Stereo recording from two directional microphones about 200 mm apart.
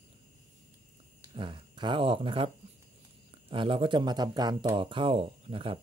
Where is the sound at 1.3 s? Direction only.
25° right (ahead or behind).